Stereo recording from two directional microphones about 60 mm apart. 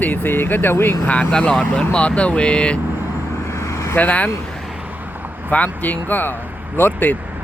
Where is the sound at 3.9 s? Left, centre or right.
Left.